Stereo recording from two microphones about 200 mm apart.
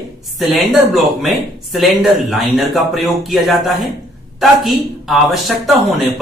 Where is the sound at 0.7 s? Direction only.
Centre (ahead or behind).